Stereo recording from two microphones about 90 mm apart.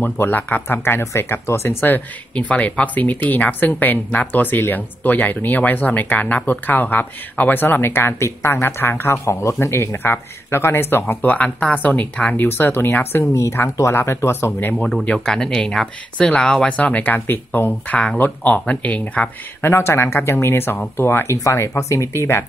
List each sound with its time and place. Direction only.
0.0 s speech: 20° left (ahead or behind)
14.9 s speech: 10° left (ahead or behind); by 22.4 s 30° left (ahead or behind)